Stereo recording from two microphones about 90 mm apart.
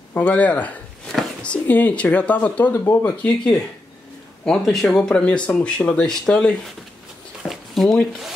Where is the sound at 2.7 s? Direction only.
30° left (ahead or behind).